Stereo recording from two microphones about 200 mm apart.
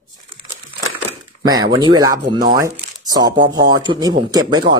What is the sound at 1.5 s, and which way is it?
Speech, 20° right (ahead or behind).